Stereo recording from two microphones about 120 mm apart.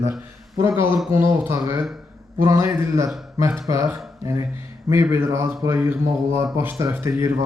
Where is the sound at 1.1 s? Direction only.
20° right (ahead or behind).